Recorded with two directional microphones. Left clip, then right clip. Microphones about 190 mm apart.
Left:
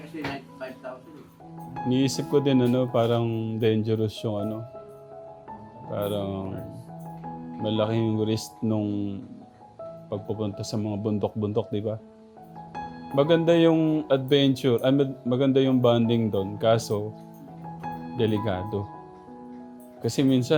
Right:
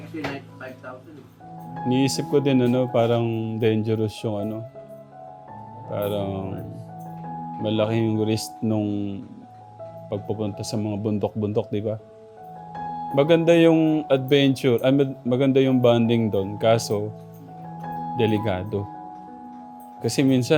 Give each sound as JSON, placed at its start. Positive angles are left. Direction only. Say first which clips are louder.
{"t": 1.9, "sound": "speech", "louder": "right 3 dB", "side_deg": -20}
{"t": 5.9, "sound": "speech", "louder": "right 3 dB", "side_deg": -20}
{"t": 7.6, "sound": "speech", "louder": "right 2 dB", "side_deg": -20}
{"t": 13.1, "sound": "speech", "louder": "right 3 dB", "side_deg": -20}
{"t": 18.2, "sound": "speech", "louder": "right 3 dB", "side_deg": -20}
{"t": 20.0, "sound": "speech", "louder": "right 3 dB", "side_deg": -20}